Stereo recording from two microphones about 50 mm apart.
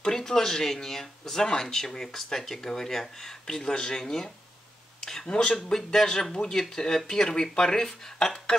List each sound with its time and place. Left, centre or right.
0.0 s speech: centre